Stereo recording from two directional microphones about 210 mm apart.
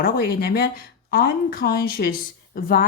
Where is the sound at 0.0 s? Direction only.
45° left (ahead or behind).